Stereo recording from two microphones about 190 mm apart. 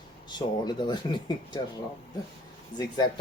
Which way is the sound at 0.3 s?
25° left (ahead or behind).